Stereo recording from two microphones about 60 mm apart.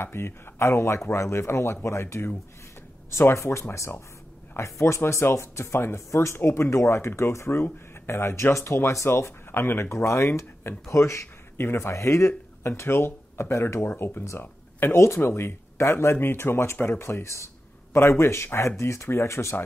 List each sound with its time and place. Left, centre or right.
0.0 s speech: left
11.5 s speech: left
13.7 s speech: left